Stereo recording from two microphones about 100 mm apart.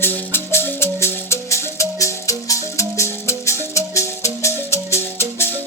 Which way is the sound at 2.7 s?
30° left (ahead or behind).